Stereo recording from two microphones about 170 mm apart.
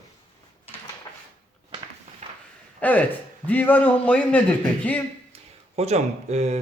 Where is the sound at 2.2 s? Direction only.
40° right (ahead or behind).